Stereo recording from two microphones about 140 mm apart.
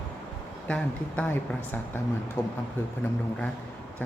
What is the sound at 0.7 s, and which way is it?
Speech, 10° left (ahead or behind).